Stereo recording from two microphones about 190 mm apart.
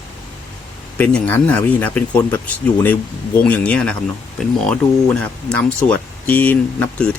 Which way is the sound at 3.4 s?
5° left (ahead or behind).